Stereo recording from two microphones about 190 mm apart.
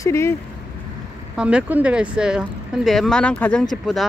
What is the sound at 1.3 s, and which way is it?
Speech, 5° right (ahead or behind).